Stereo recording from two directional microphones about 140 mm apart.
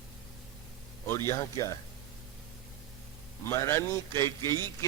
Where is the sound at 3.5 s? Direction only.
20° left (ahead or behind).